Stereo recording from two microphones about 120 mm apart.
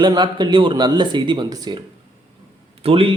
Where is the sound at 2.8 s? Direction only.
50° right (ahead or behind).